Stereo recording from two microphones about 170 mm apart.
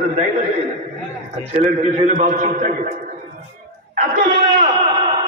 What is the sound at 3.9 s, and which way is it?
Speech, 55° right (ahead or behind).